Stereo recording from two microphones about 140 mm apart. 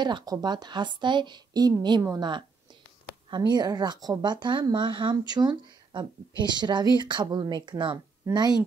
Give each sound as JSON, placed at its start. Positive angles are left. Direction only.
{"t": 0.0, "sound": "speech", "side_deg": -30}